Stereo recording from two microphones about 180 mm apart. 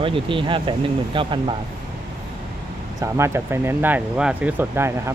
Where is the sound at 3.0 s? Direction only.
15° right (ahead or behind).